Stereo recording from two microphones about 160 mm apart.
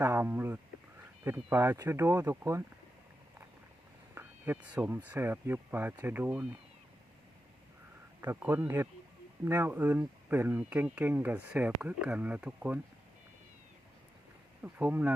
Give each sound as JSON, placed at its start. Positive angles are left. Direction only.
{"t": 0.0, "sound": "speech", "side_deg": -15}
{"t": 4.1, "sound": "a sound", "side_deg": -15}
{"t": 5.0, "sound": "speech", "side_deg": -10}
{"t": 8.3, "sound": "speech", "side_deg": -15}
{"t": 14.6, "sound": "speech", "side_deg": -10}